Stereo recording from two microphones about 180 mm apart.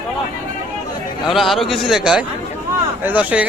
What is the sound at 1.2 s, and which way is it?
A man's voice, centre (ahead or behind).